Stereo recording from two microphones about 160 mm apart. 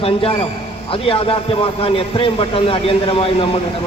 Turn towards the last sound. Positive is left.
turn(degrees=35)  # may be behind; listen again after turning